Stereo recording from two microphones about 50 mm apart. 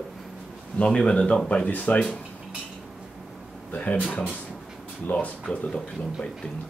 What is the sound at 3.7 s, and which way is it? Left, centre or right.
Speech, left.